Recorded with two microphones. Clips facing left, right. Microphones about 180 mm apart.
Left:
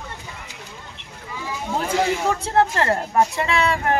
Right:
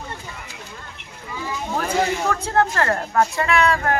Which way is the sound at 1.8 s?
20° left (ahead or behind).